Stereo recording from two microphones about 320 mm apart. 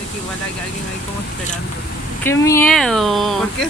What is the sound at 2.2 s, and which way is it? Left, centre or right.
Speech, centre.